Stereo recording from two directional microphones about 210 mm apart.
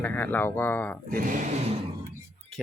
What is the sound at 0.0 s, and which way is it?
Speech, 10° left (ahead or behind).